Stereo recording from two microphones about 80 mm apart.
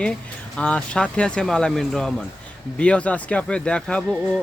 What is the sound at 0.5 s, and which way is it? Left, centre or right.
Speech, centre.